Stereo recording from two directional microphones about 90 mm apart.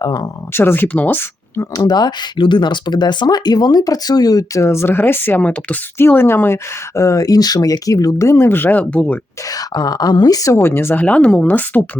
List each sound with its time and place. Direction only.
0.0 s speech: 50° left (ahead or behind)
0.5 s speech: 25° left (ahead or behind)
1.8 s speech: 50° left (ahead or behind)
4.6 s speech: 30° left (ahead or behind); by 9.1 s 15° left (ahead or behind)
9.5 s speech: 45° left (ahead or behind)
10.6 s speech: 25° left (ahead or behind)
11.0 s speech: 15° left (ahead or behind)